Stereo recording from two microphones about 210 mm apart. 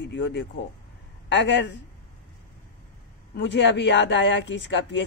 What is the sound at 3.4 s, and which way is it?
Speech, 60° left (ahead or behind).